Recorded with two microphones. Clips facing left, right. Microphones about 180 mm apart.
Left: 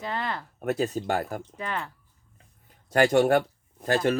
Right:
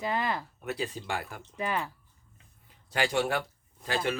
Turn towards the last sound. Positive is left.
turn(degrees=45)  # may be behind; listen again after turning